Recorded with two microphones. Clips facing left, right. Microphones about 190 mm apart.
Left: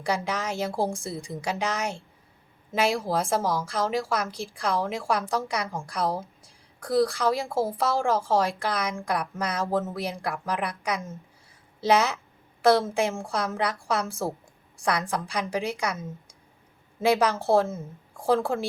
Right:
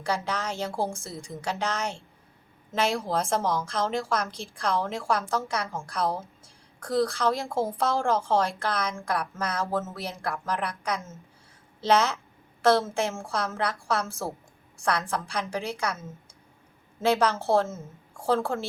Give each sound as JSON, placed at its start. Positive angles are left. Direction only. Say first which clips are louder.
{"t": 0.0, "sound": "a woman's voice", "louder": "left 1 dB", "side_deg": 15}